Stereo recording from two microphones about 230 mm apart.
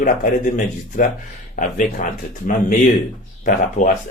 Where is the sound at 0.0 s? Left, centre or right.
Left.